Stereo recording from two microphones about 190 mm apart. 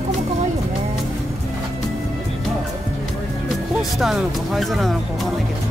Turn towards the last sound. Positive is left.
turn(degrees=0)  # may be behind; listen again after turning